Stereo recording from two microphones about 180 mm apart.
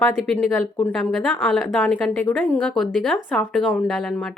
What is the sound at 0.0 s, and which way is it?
Speech, 10° left (ahead or behind).